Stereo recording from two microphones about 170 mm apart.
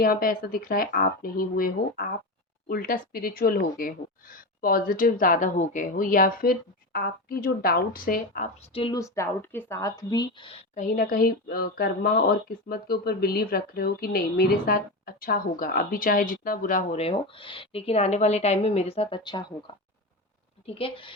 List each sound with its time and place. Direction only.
0.0 s speech: 60° left (ahead or behind)
8.7 s speech: 30° left (ahead or behind)
9.0 s a woman's voice: 15° left (ahead or behind)
10.8 s speech: 55° left (ahead or behind)
16.9 s speech: 35° left (ahead or behind)
20.7 s speech: 30° left (ahead or behind)